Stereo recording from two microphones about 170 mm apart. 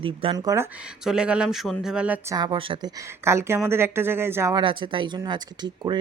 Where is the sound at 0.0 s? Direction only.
30° right (ahead or behind).